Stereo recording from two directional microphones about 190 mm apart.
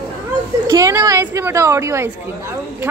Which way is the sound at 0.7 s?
15° right (ahead or behind).